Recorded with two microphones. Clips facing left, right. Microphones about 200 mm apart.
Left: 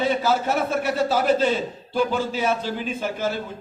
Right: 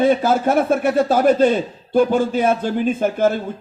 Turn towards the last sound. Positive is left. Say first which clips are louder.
# right 9 dB
turn(degrees=-50)  # may be behind; listen again after turning